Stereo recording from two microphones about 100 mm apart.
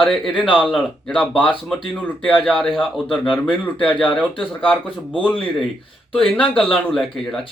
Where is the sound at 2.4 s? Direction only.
5° left (ahead or behind).